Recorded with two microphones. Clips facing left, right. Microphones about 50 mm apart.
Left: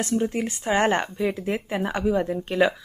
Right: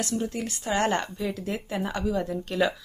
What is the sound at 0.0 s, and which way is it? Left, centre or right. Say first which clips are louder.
A woman's voice: left 5 dB; left.